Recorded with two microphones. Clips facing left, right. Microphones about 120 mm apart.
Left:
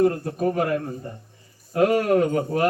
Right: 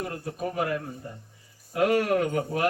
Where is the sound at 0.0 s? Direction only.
50° left (ahead or behind).